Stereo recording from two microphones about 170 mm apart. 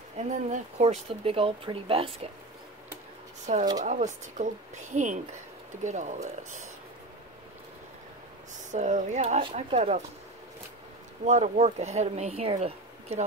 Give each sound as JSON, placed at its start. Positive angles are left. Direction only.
{"t": 0.2, "sound": "speech", "side_deg": -45}
{"t": 3.8, "sound": "speech", "side_deg": -45}
{"t": 8.7, "sound": "speech", "side_deg": -45}
{"t": 11.2, "sound": "speech", "side_deg": -45}